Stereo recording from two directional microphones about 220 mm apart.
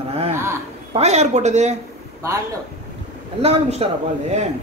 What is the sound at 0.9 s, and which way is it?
Speech, 30° right (ahead or behind).